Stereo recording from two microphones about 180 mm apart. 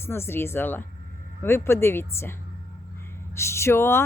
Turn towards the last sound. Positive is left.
turn(degrees=15)  # may be behind; listen again after turning